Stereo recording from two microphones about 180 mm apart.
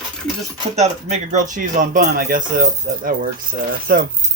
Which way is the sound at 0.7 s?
40° right (ahead or behind).